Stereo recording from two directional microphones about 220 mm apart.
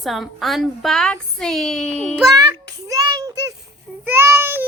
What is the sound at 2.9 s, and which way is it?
Child singing, 15° right (ahead or behind).